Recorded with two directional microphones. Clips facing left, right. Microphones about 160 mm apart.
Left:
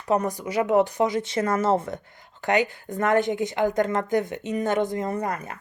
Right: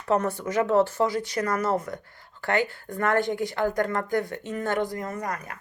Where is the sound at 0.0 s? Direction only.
15° left (ahead or behind).